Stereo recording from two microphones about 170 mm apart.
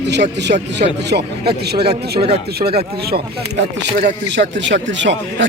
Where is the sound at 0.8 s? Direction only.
75° right (ahead or behind).